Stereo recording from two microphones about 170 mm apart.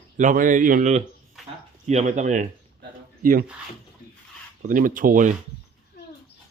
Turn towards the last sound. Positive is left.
turn(degrees=-50)  # may be behind; listen again after turning